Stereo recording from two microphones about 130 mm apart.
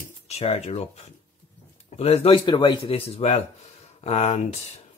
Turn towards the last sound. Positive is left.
turn(degrees=50)  # may be behind; listen again after turning